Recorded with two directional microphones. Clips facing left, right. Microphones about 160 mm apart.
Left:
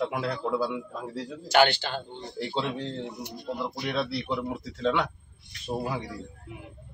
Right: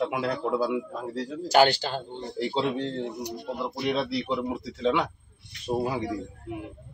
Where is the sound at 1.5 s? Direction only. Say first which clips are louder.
Right 2 dB; 35° right (ahead or behind).